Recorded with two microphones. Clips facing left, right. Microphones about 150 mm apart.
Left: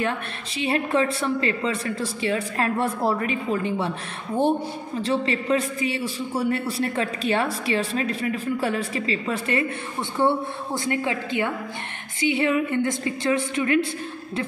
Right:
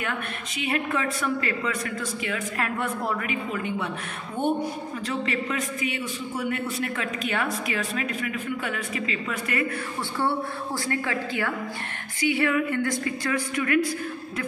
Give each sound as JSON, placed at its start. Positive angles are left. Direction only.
{"t": 0.0, "sound": "a woman's voice", "side_deg": 30}